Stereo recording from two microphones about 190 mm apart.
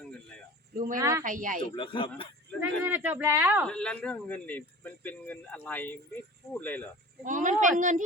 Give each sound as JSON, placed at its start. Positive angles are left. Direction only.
{"t": 0.9, "sound": "speech", "side_deg": -15}
{"t": 1.2, "sound": "speech", "side_deg": -45}
{"t": 1.7, "sound": "speech", "side_deg": 25}
{"t": 2.6, "sound": "speech", "side_deg": -10}
{"t": 3.7, "sound": "speech", "side_deg": 5}
{"t": 7.3, "sound": "a woman's voice", "side_deg": -40}